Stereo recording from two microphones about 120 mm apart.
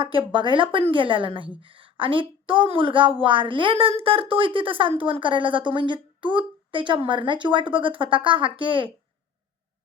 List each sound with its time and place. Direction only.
0.0 s speech: 45° right (ahead or behind)